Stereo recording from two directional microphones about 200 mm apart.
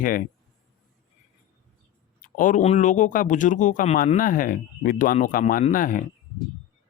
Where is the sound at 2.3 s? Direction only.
40° left (ahead or behind).